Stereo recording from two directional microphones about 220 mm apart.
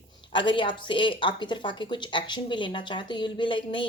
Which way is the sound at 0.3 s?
20° left (ahead or behind).